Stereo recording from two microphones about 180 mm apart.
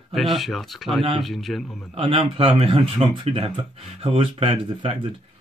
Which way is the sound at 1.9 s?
35° right (ahead or behind).